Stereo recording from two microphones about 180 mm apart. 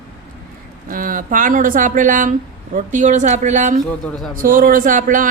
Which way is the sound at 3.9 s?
5° left (ahead or behind).